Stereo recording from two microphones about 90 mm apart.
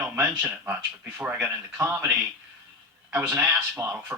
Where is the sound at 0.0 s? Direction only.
15° right (ahead or behind).